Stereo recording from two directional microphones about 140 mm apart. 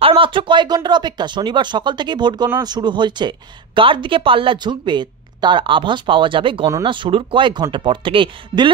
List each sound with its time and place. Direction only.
0.0 s speech: 40° right (ahead or behind)